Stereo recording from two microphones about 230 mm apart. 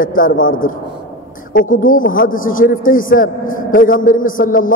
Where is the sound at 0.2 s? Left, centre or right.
Left.